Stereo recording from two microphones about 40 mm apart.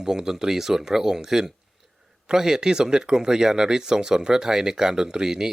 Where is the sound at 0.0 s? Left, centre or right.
Centre.